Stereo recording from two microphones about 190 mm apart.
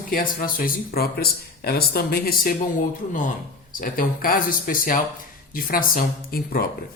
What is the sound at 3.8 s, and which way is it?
Speech, 50° left (ahead or behind).